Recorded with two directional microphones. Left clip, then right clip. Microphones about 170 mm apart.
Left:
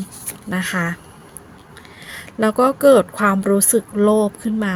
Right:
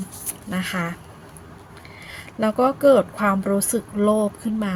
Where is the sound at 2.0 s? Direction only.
45° left (ahead or behind).